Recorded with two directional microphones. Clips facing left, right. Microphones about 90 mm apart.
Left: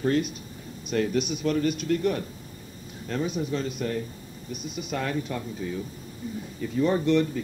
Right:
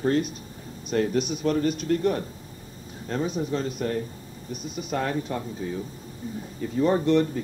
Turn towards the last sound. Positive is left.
turn(degrees=-35)  # may be behind; listen again after turning